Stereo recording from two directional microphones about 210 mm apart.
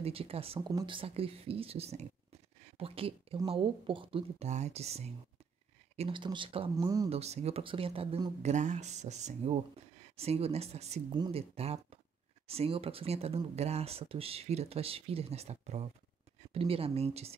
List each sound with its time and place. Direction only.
0.0 s speech: 25° right (ahead or behind)
7.1 s speech: 30° right (ahead or behind)